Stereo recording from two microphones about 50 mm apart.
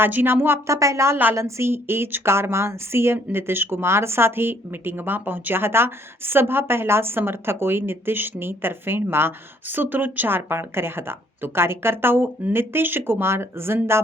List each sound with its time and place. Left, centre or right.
0.0 s speech: right
0.7 s speech: right
1.1 s speech: right
1.4 s a woman's voice: right